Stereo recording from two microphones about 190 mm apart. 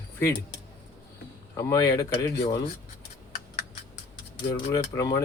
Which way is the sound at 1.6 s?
15° left (ahead or behind).